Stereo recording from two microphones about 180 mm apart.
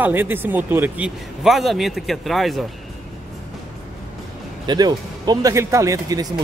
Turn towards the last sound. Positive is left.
turn(degrees=-20)  # may be behind; listen again after turning